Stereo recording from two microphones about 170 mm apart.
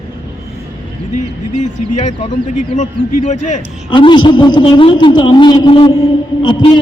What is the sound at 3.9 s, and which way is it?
A man's voice, 30° left (ahead or behind).